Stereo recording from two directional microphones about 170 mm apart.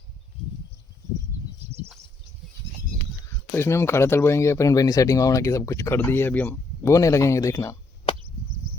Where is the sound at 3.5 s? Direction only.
15° left (ahead or behind).